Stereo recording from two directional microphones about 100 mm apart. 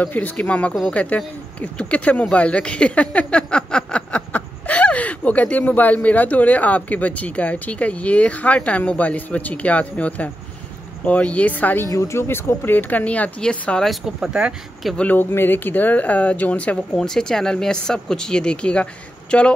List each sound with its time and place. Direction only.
0.0 s speech: 15° left (ahead or behind)
11.9 s speech: 30° left (ahead or behind); by 13.9 s 10° left (ahead or behind)
14.0 s speech: 5° right (ahead or behind)
15.0 s speech: 20° left (ahead or behind)